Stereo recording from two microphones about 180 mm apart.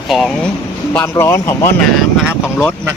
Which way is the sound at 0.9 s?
10° left (ahead or behind).